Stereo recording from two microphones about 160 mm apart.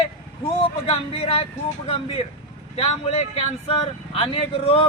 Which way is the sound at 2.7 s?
40° left (ahead or behind).